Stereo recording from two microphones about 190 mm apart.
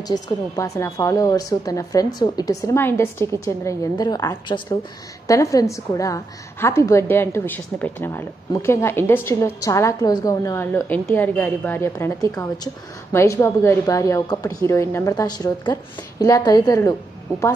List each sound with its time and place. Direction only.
0.1 s a woman's voice: 15° left (ahead or behind)